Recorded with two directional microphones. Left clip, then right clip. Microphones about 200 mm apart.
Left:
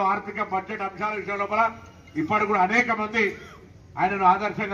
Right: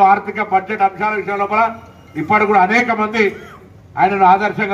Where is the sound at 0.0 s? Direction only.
35° right (ahead or behind).